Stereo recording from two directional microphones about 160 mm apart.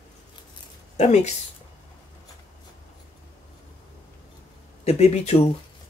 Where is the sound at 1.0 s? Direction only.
45° left (ahead or behind).